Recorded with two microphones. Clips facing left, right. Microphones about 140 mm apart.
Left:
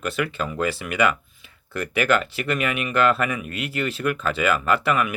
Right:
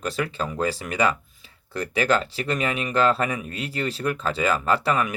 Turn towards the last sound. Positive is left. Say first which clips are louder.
# left 1 dB
turn(degrees=-30)  # may be behind; listen again after turning